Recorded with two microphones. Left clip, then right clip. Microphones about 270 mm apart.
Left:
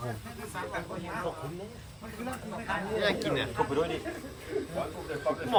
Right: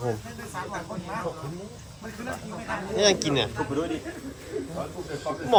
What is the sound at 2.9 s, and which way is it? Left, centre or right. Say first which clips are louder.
Speech: right 8 dB; centre.